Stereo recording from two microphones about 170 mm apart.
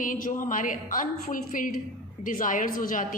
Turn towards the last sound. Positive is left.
turn(degrees=50)  # may be behind; listen again after turning